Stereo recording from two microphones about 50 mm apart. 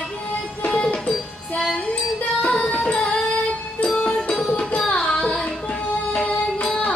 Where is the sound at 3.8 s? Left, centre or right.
Centre.